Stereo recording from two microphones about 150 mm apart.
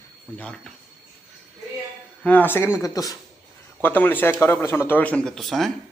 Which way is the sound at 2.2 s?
10° left (ahead or behind).